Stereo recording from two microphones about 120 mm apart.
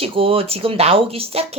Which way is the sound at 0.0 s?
50° right (ahead or behind).